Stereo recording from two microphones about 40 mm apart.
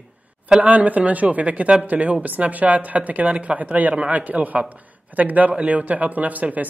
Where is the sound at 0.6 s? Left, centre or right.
Right.